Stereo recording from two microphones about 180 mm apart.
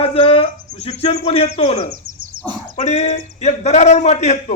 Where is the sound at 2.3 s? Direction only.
50° right (ahead or behind).